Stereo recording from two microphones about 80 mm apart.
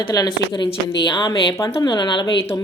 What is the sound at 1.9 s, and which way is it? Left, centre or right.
Speech, left.